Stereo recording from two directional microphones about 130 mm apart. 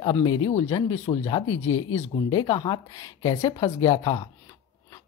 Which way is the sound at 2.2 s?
35° left (ahead or behind).